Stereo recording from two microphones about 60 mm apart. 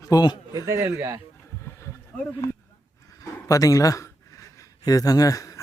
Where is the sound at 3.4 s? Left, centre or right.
Left.